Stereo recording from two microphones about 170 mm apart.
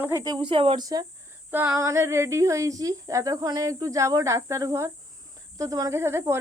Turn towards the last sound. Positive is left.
turn(degrees=-15)  # may be behind; listen again after turning